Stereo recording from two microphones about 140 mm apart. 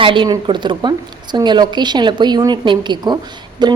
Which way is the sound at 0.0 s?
35° right (ahead or behind).